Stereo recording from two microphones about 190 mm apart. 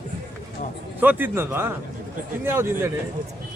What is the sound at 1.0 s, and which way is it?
Speech, 10° right (ahead or behind).